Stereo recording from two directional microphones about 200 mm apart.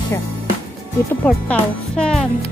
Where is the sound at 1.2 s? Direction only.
5° left (ahead or behind).